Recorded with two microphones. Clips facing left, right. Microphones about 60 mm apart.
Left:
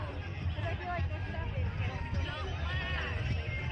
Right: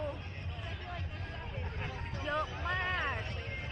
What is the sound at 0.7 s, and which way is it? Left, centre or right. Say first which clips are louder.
Hubbub: left 8 dB; left.